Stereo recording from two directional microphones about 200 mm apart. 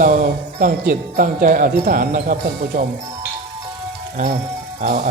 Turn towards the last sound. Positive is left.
turn(degrees=-35)  # may be behind; listen again after turning